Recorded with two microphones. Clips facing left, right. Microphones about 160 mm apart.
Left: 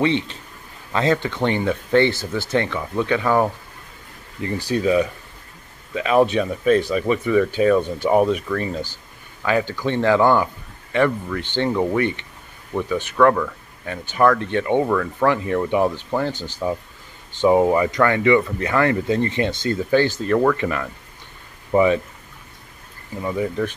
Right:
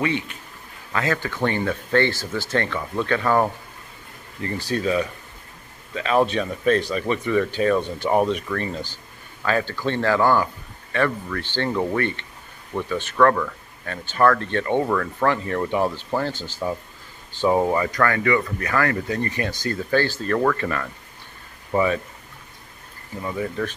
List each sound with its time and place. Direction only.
0.0 s speech: 25° left (ahead or behind)
14.9 s speech: 5° left (ahead or behind)
15.2 s speech: 15° left (ahead or behind)
23.2 s speech: 15° left (ahead or behind)